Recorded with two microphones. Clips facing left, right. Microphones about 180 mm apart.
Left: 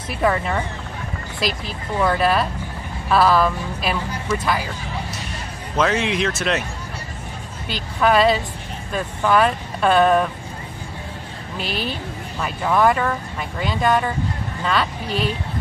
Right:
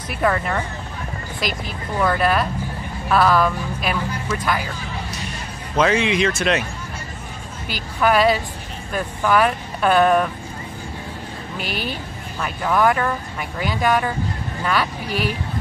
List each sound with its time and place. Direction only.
0.1 s speech: 5° left (ahead or behind)
2.0 s speech: 5° left (ahead or behind)
5.8 s speech: centre (ahead or behind)
8.0 s speech: 5° right (ahead or behind)
11.6 s a woman's voice: 30° left (ahead or behind)
11.9 s speech: centre (ahead or behind)
15.0 s a woman's voice: 25° left (ahead or behind)